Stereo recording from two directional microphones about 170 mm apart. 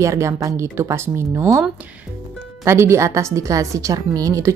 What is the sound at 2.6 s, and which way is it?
A woman's voice, 15° right (ahead or behind).